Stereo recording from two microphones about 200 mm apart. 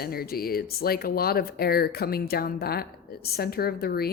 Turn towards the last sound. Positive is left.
turn(degrees=50)  # may be behind; listen again after turning